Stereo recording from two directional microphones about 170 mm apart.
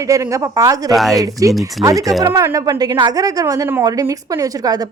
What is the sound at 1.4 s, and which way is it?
Speech, 20° right (ahead or behind).